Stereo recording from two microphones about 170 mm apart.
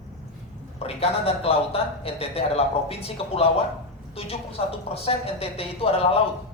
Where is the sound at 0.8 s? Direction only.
35° left (ahead or behind).